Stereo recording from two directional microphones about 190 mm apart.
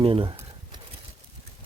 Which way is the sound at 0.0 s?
30° right (ahead or behind).